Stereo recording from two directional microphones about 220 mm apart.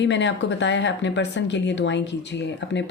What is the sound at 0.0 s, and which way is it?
Speech, 55° left (ahead or behind).